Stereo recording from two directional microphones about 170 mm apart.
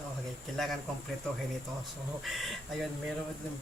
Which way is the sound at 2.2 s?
Centre (ahead or behind).